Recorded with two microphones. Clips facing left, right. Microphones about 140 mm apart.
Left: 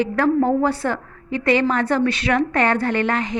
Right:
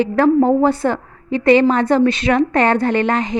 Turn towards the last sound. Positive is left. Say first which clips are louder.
# right 4 dB
turn(degrees=-20)  # may be behind; listen again after turning